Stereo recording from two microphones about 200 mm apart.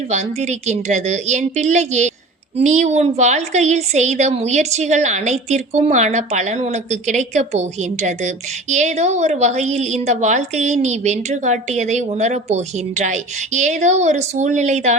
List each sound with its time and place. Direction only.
0.1 s a woman's voice: 35° right (ahead or behind)